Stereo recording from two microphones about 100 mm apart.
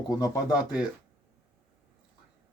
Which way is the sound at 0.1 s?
40° left (ahead or behind).